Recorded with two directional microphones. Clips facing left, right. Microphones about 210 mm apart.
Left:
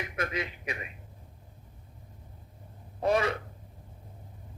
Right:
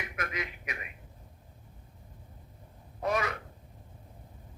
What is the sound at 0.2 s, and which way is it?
Speech, 30° left (ahead or behind).